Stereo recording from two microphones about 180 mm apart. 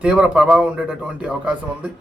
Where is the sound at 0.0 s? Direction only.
5° right (ahead or behind).